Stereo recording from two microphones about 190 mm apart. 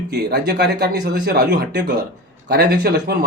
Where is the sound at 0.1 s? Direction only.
60° right (ahead or behind).